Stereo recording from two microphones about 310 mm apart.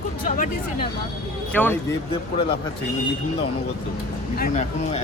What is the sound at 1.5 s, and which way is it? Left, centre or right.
Speech, centre.